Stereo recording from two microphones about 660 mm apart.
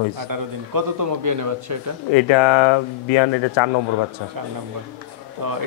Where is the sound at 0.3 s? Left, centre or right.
Right.